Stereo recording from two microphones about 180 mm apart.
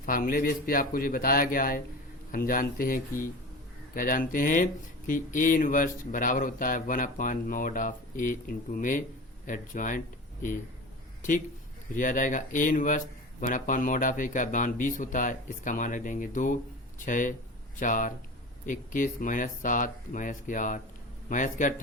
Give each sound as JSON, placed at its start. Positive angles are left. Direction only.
{"t": 0.0, "sound": "speech", "side_deg": 50}
{"t": 11.9, "sound": "speech", "side_deg": 45}